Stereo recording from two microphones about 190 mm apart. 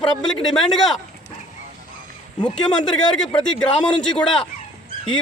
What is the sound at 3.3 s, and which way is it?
Speech, 25° left (ahead or behind).